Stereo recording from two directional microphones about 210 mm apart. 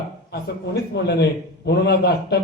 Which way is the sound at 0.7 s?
50° left (ahead or behind).